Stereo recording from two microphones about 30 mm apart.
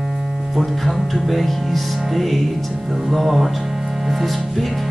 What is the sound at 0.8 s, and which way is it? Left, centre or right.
Music, centre.